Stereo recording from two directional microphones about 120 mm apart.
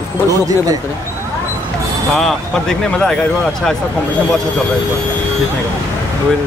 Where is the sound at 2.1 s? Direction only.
5° left (ahead or behind).